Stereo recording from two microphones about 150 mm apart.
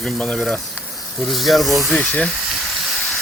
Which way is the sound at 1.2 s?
Centre (ahead or behind).